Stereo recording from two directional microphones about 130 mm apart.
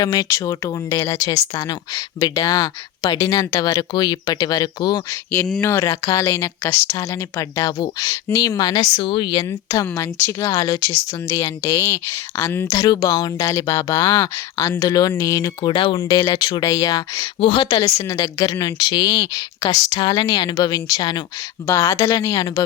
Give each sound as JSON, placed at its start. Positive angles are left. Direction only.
{"t": 0.0, "sound": "speech", "side_deg": 30}
{"t": 5.5, "sound": "speech", "side_deg": 20}
{"t": 9.5, "sound": "speech", "side_deg": 25}
{"t": 12.7, "sound": "speech", "side_deg": 30}
{"t": 15.7, "sound": "speech", "side_deg": 40}
{"t": 18.1, "sound": "speech", "side_deg": 25}
{"t": 21.7, "sound": "speech", "side_deg": 20}